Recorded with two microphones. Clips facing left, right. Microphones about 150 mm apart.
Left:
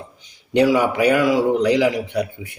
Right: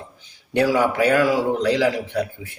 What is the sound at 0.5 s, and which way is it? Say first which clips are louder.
A man's voice: left 2 dB; 15° left (ahead or behind).